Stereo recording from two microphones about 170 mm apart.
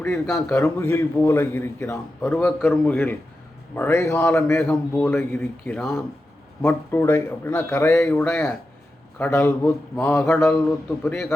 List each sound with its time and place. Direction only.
0.0 s a man's voice: 15° left (ahead or behind)